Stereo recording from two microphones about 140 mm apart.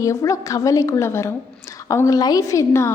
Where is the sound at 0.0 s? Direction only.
25° left (ahead or behind).